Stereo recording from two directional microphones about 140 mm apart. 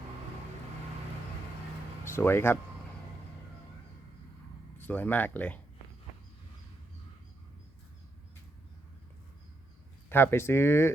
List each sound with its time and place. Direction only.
2.0 s speech: 15° left (ahead or behind)
4.8 s speech: 10° left (ahead or behind)
10.1 s speech: 15° left (ahead or behind)